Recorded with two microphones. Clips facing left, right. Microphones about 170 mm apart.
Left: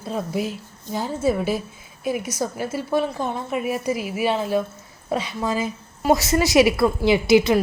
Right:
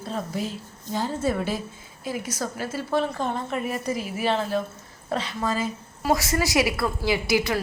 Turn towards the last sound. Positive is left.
turn(degrees=20)  # may be behind; listen again after turning